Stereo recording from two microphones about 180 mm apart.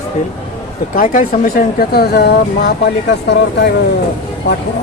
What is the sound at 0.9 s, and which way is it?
Speech, 45° left (ahead or behind).